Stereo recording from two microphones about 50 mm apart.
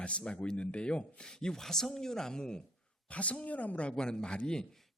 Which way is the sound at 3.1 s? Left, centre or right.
Left.